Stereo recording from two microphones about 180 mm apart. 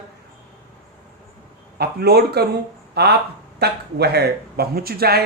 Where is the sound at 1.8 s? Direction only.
65° right (ahead or behind).